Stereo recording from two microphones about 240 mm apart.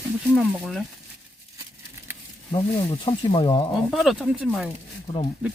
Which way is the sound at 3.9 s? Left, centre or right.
Centre.